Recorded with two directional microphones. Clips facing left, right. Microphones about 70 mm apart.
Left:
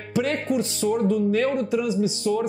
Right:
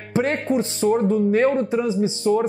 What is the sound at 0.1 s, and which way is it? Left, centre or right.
Speech, right.